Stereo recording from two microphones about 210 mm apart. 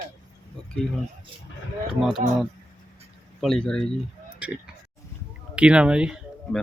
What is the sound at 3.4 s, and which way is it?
Speech, 5° left (ahead or behind).